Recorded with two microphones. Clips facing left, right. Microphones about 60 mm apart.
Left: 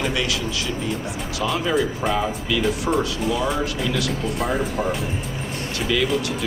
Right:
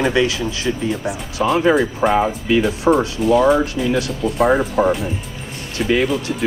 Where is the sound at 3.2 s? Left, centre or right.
Centre.